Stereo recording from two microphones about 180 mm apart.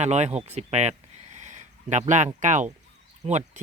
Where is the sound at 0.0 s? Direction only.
40° right (ahead or behind).